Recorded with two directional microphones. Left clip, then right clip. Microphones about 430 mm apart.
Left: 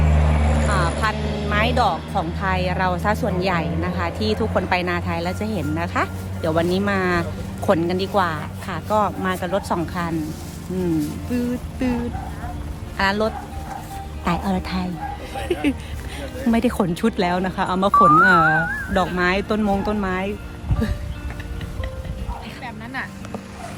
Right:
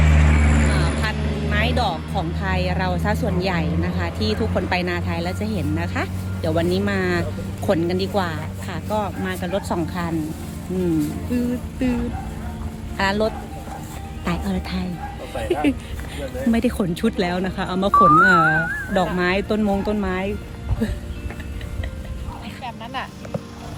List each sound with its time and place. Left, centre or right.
0.3 s vehicle: left
1.0 s speech: centre
11.3 s speech: centre
13.0 s speech: centre
16.5 s speech: centre